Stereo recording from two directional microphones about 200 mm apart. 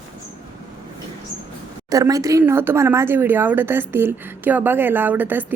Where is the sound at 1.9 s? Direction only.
15° right (ahead or behind).